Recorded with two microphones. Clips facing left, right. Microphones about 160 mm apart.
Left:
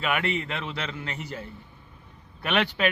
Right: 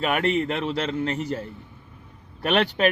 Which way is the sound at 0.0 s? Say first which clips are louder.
Right 5 dB; 40° right (ahead or behind).